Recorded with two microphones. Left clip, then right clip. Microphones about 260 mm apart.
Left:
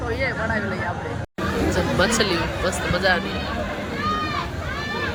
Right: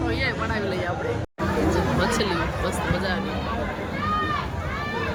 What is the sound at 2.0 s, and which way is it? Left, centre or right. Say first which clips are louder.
Speech: left 4 dB; centre.